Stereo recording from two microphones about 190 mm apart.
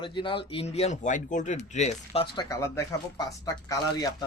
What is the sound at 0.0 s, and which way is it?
Speech, 25° left (ahead or behind).